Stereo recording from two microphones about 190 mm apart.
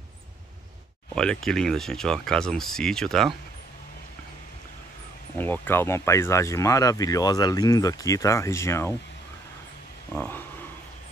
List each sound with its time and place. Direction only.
1.1 s speech: 5° left (ahead or behind)
5.4 s speech: 10° left (ahead or behind)
10.1 s speech: 10° left (ahead or behind)